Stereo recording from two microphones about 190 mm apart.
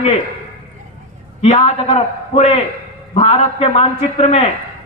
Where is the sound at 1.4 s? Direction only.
35° left (ahead or behind).